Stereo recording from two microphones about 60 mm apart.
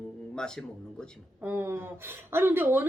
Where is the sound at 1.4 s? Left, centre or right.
Right.